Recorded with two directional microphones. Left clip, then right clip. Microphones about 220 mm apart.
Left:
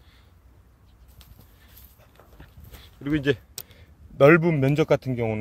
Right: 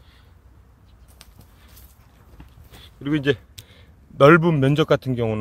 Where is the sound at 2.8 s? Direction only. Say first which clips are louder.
Right 3 dB; centre (ahead or behind).